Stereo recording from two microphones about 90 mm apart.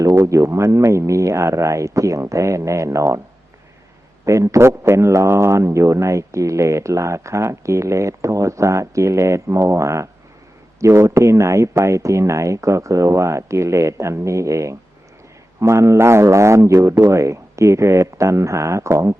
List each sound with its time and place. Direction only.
0.0 s speech: 35° right (ahead or behind)
4.3 s speech: 35° right (ahead or behind)